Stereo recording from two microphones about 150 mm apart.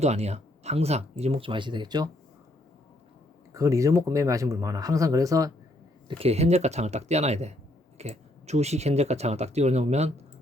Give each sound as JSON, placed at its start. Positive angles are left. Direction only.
{"t": 0.0, "sound": "speech", "side_deg": -45}
{"t": 3.5, "sound": "speech", "side_deg": -20}
{"t": 6.1, "sound": "speech", "side_deg": -40}